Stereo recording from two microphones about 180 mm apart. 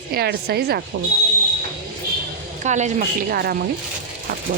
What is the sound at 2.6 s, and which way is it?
Speech, 40° right (ahead or behind).